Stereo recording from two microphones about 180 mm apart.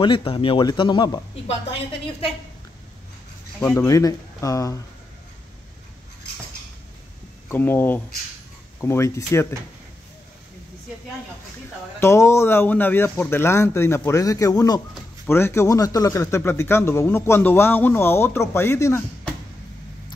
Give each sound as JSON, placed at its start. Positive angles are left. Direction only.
{"t": 0.0, "sound": "a man's voice", "side_deg": 30}
{"t": 3.6, "sound": "speech", "side_deg": 15}
{"t": 7.4, "sound": "speech", "side_deg": 10}
{"t": 12.0, "sound": "speech", "side_deg": 15}